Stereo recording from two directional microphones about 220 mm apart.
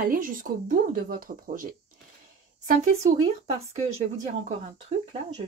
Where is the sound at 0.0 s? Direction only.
40° right (ahead or behind).